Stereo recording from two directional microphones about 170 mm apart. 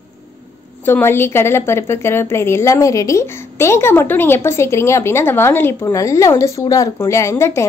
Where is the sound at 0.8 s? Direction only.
15° left (ahead or behind).